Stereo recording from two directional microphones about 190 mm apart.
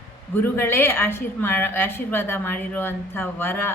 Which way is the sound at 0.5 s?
10° left (ahead or behind).